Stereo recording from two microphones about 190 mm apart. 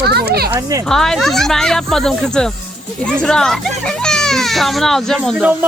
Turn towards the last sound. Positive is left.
turn(degrees=0)  # may be behind; listen again after turning